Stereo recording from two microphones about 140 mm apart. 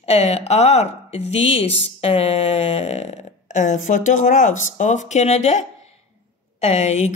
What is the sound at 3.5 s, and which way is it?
Speech, 60° left (ahead or behind).